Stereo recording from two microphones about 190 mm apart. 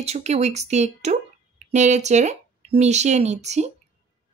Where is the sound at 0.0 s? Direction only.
35° right (ahead or behind).